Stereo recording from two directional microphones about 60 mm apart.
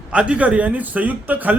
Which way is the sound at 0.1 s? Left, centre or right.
Right.